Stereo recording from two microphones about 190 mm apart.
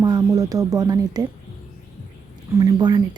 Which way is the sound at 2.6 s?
20° right (ahead or behind).